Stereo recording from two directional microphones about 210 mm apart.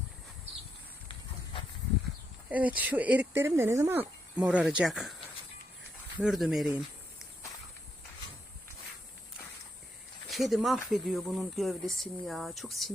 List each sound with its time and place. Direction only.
2.5 s speech: 5° right (ahead or behind)
6.1 s speech: centre (ahead or behind)
10.2 s speech: centre (ahead or behind)